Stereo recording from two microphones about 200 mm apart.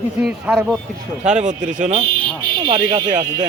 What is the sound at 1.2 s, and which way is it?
Speech, 35° right (ahead or behind).